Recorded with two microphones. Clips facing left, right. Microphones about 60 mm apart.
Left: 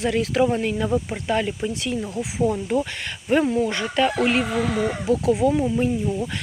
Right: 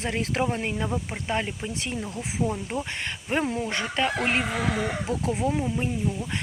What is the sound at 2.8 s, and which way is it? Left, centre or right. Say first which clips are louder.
Speech: left 3 dB; right.